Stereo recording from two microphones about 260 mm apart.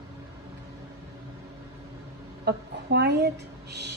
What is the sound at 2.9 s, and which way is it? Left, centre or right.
A woman's voice, right.